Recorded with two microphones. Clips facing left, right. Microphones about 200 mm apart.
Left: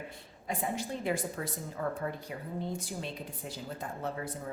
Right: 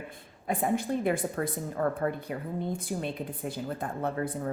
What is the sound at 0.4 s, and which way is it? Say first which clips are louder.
Speech: right 7 dB; 55° right (ahead or behind).